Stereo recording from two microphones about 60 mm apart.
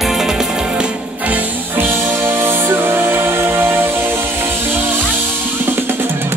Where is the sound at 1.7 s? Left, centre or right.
Right.